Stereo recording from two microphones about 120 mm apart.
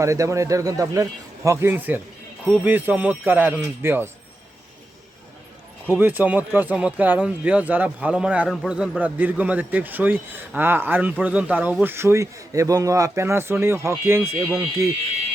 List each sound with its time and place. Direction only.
0.0 s speech: 25° right (ahead or behind)
1.5 s a man's voice: 15° right (ahead or behind)
5.9 s a man's voice: 15° right (ahead or behind)